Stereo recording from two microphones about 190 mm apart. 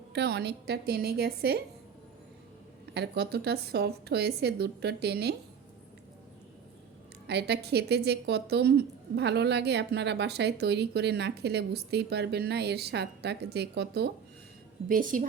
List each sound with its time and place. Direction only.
0.1 s a woman's voice: 60° right (ahead or behind)
2.9 s a woman's voice: 60° right (ahead or behind)
7.3 s a woman's voice: 60° right (ahead or behind)
14.8 s a woman's voice: 45° right (ahead or behind)